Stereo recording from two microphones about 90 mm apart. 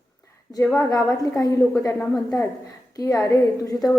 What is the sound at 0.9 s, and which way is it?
A woman's voice, 40° left (ahead or behind).